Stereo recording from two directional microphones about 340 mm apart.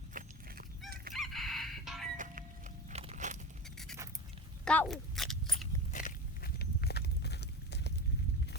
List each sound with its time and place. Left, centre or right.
0.1 s horse: right
0.9 s chicken: right
1.1 s chicken: centre
2.1 s a sound: right
3.8 s a sound: centre
5.9 s walk: left